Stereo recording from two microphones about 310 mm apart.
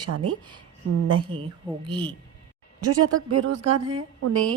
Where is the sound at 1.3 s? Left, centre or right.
Centre.